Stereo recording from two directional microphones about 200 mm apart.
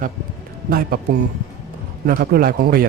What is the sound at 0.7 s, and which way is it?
Speech, 50° right (ahead or behind).